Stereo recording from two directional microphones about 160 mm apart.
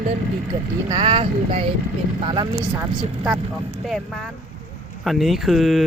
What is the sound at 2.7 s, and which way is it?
Speech, 10° right (ahead or behind).